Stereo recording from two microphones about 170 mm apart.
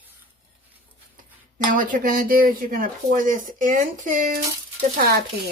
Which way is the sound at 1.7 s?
55° right (ahead or behind).